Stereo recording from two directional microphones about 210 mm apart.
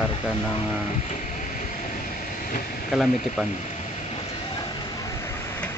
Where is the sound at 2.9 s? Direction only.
Centre (ahead or behind).